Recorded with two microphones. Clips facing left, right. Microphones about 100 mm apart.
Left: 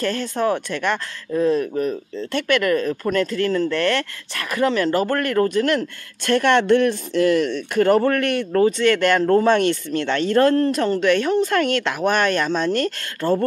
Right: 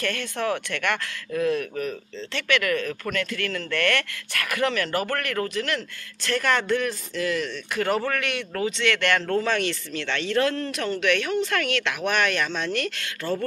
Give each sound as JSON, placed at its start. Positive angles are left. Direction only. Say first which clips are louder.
{"t": 0.0, "sound": "speech", "louder": "left 6 dB", "side_deg": 35}